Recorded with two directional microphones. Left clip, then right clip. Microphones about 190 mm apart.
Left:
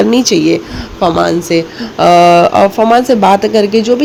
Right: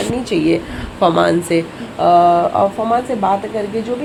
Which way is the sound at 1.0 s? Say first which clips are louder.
Left 2 dB; 10° left (ahead or behind).